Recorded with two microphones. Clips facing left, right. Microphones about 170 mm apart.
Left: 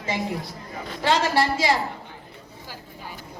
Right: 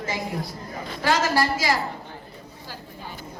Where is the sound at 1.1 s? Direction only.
25° left (ahead or behind).